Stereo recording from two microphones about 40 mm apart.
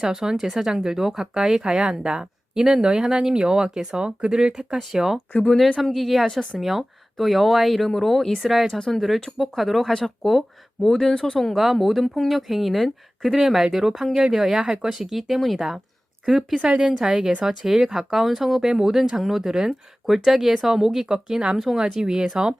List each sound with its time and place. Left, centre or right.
0.0 s speech: centre
5.8 s speech: centre
11.5 s speech: centre
14.6 s speech: right
14.8 s speech: centre